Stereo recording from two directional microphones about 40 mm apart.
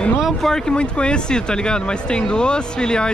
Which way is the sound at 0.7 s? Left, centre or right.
Left.